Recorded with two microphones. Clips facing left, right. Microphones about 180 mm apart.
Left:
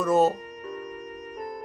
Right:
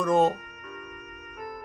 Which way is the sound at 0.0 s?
5° left (ahead or behind).